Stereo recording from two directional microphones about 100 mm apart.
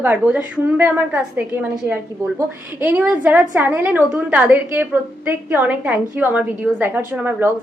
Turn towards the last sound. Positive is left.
turn(degrees=-20)  # may be behind; listen again after turning